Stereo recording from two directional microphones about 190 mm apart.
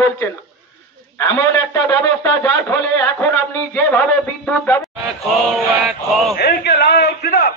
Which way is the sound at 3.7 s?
10° left (ahead or behind).